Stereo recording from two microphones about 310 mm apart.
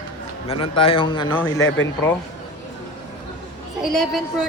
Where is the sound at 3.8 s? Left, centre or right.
Centre.